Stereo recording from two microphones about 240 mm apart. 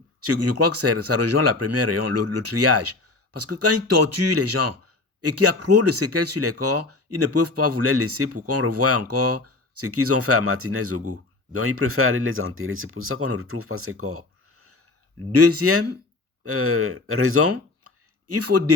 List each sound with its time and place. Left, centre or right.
0.2 s speech: right